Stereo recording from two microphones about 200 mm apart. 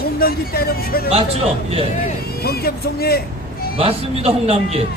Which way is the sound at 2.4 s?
50° left (ahead or behind).